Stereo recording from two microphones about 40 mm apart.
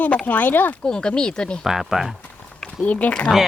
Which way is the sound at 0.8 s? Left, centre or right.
Left.